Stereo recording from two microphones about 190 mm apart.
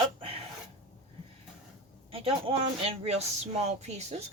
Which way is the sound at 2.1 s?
30° right (ahead or behind).